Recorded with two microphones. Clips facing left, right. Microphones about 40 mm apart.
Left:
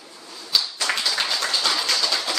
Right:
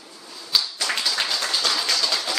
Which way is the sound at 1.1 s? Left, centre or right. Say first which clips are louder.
Left 1 dB; centre.